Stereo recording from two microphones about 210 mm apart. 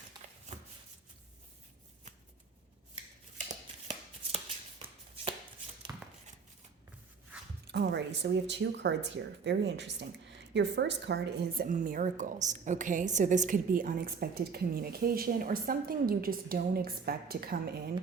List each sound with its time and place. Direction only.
0.5 s shuffling cards: 30° right (ahead or behind)
3.3 s chopping: 35° right (ahead or behind)
5.9 s a sound: 15° right (ahead or behind)
7.7 s a woman's voice: 55° right (ahead or behind)